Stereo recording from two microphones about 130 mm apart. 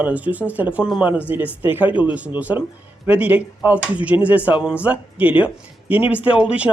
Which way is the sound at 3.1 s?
10° right (ahead or behind).